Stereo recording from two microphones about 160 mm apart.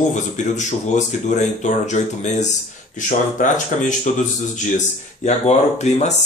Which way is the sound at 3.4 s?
55° left (ahead or behind).